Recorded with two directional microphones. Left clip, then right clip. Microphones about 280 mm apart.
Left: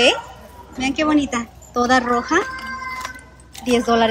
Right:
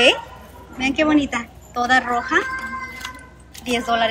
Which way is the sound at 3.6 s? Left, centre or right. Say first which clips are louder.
Left 3 dB; centre.